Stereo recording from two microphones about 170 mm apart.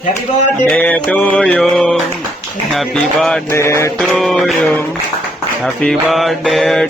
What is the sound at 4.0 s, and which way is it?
Speech, centre (ahead or behind).